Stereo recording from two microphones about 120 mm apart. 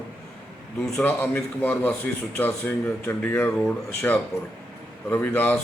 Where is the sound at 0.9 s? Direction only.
15° left (ahead or behind).